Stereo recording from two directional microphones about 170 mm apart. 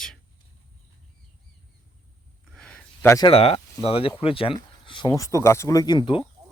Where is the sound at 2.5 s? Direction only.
5° left (ahead or behind).